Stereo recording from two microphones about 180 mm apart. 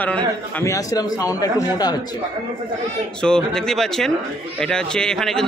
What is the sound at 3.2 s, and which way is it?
A man's voice, 5° left (ahead or behind).